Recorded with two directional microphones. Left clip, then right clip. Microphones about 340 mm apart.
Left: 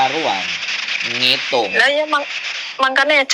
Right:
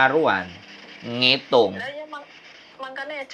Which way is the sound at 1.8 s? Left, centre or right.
Left.